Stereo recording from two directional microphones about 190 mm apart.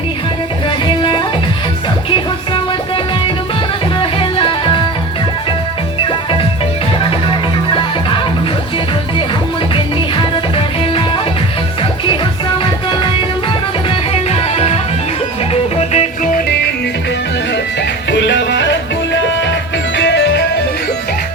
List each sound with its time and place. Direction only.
2.0 s music: 25° left (ahead or behind)
7.7 s music: 25° left (ahead or behind)
14.1 s music: 30° left (ahead or behind)
15.8 s music: 35° left (ahead or behind)
17.5 s music: 65° left (ahead or behind)